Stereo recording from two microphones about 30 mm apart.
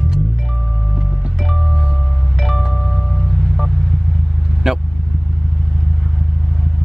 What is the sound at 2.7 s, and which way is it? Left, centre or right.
Music, centre.